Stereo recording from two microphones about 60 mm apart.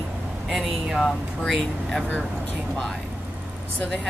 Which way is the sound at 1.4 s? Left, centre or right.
Centre.